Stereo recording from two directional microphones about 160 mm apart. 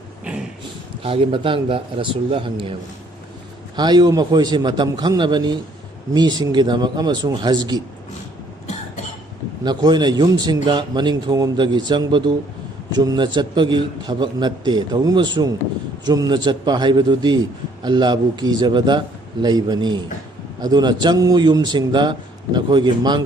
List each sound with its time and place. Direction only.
1.0 s a man's voice: 35° right (ahead or behind)
3.8 s a man's voice: 25° right (ahead or behind)
9.6 s a man's voice: 25° right (ahead or behind)